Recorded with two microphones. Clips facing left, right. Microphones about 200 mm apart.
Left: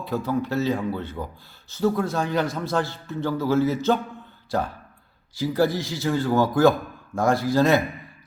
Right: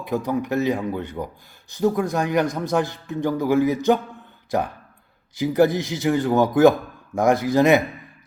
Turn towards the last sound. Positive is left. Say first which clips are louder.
# right 3 dB
turn(degrees=-20)  # may be behind; listen again after turning